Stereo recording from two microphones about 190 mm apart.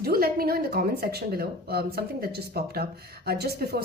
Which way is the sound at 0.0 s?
55° right (ahead or behind).